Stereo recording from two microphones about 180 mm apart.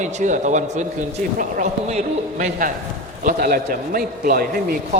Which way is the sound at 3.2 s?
50° right (ahead or behind).